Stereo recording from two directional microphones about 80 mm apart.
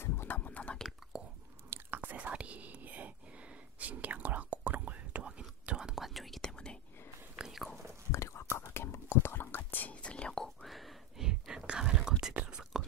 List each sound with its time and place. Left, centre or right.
0.0 s a sound: left
0.4 s whispering: centre
1.7 s whispering: right; by 6.8 s centre
7.3 s biting: centre
8.1 s whispering: left; by 12.8 s centre